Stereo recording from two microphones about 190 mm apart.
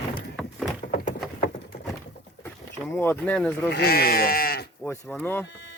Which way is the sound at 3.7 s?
55° left (ahead or behind).